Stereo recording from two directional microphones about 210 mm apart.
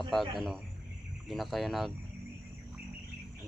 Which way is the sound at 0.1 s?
Centre (ahead or behind).